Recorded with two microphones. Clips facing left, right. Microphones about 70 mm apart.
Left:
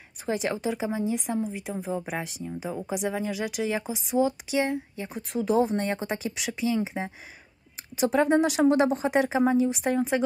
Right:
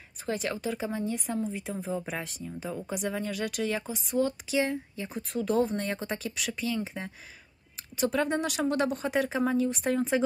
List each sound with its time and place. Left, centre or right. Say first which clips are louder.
0.3 s speech: left 4 dB; centre